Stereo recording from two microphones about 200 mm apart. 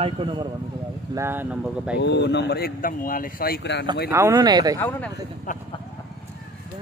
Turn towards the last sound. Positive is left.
turn(degrees=40)  # may be behind; listen again after turning